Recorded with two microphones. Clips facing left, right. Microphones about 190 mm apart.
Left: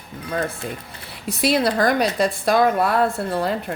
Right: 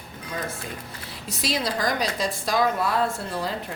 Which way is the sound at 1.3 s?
60° left (ahead or behind).